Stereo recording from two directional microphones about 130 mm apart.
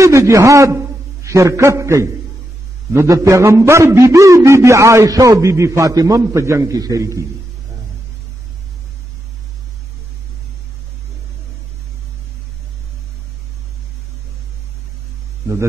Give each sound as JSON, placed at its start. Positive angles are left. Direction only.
{"t": 0.0, "sound": "a man's voice", "side_deg": -25}